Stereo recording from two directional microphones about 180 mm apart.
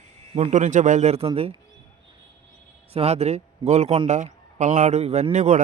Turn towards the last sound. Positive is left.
turn(degrees=-40)  # may be behind; listen again after turning